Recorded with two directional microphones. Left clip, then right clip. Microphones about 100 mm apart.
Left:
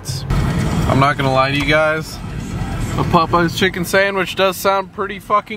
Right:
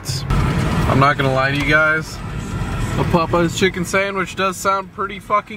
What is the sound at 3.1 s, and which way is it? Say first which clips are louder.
Speech: left 3 dB; 30° left (ahead or behind).